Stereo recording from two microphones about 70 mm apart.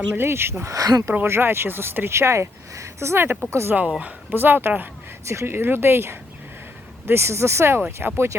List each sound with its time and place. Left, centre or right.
0.1 s speech: right
0.7 s speech: right
1.3 s speech: right
3.8 s speech: centre
5.2 s speech: right